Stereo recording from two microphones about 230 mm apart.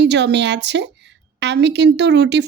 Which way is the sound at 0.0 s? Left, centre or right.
Right.